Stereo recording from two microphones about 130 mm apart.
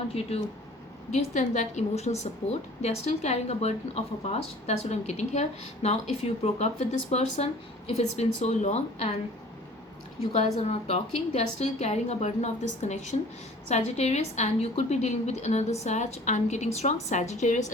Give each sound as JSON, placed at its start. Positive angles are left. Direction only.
{"t": 0.1, "sound": "speech", "side_deg": 50}
{"t": 1.1, "sound": "a woman's voice", "side_deg": 65}
{"t": 10.6, "sound": "a woman's voice", "side_deg": 55}